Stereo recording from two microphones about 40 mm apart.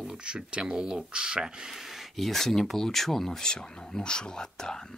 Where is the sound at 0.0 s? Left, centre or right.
Right.